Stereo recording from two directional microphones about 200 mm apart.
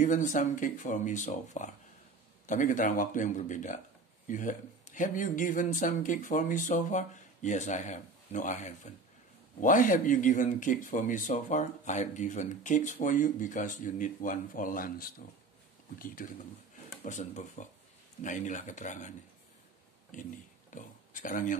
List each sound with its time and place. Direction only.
0.0 s speech: 40° left (ahead or behind)
17.0 s speech: 35° left (ahead or behind)